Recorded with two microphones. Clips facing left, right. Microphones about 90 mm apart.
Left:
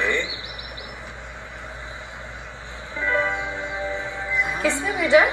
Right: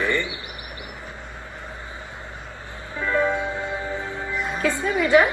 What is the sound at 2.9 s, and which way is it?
Music, 45° right (ahead or behind).